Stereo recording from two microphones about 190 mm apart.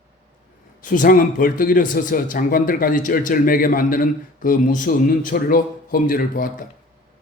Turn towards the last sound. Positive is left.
turn(degrees=50)  # may be behind; listen again after turning